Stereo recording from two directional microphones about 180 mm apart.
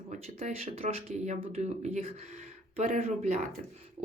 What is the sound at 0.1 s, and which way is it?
Speech, 35° right (ahead or behind).